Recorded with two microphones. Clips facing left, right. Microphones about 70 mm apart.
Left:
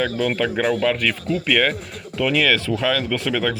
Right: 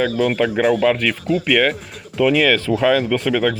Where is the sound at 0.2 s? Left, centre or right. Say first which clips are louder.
Right 4 dB; centre.